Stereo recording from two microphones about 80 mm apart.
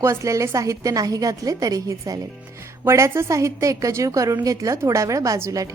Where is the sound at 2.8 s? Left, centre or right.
Right.